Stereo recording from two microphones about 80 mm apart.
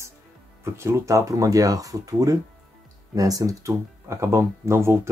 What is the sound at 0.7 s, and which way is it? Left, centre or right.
Speech, right.